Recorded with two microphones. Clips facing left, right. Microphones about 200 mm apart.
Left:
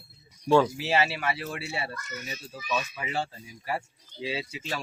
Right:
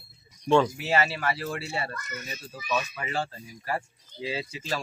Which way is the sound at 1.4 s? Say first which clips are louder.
Right 2 dB; centre (ahead or behind).